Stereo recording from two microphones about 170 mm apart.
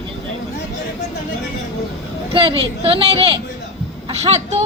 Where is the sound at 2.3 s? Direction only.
35° right (ahead or behind).